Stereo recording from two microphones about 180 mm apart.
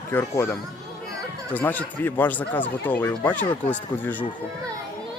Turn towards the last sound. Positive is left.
turn(degrees=10)  # may be behind; listen again after turning